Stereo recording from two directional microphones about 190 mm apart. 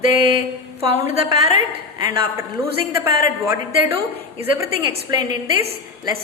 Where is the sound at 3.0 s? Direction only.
15° right (ahead or behind).